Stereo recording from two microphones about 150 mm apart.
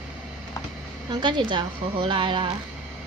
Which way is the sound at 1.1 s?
30° right (ahead or behind).